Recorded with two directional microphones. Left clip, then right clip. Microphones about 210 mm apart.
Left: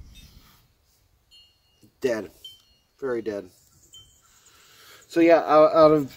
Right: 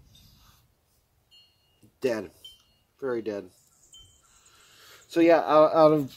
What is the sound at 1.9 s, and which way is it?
Speech, 15° right (ahead or behind).